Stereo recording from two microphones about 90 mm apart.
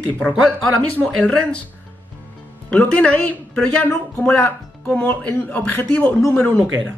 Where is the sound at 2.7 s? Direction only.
15° left (ahead or behind).